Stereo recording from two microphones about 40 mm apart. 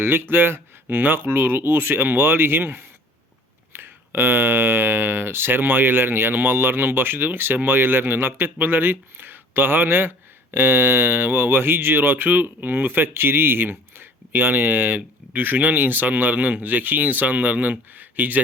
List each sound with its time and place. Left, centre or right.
0.0 s speech: right